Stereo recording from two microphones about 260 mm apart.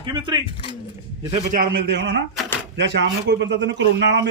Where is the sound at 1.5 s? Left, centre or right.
Right.